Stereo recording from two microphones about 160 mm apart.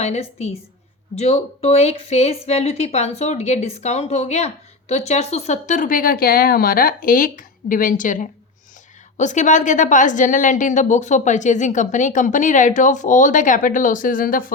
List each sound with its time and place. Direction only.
0.0 s speech: 40° left (ahead or behind); by 14.5 s 60° left (ahead or behind)